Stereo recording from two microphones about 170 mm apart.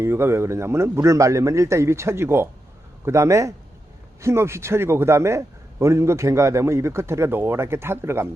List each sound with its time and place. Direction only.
0.0 s a man's voice: 15° right (ahead or behind)